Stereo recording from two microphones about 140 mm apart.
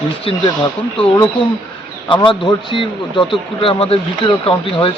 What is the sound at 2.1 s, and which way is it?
Speech, 35° left (ahead or behind).